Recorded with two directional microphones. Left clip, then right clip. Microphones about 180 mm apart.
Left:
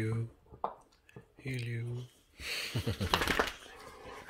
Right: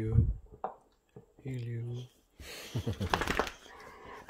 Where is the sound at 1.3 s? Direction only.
20° right (ahead or behind).